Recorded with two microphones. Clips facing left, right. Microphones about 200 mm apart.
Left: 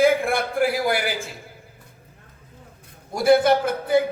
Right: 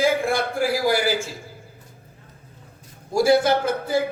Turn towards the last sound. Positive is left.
turn(degrees=55)  # may be behind; listen again after turning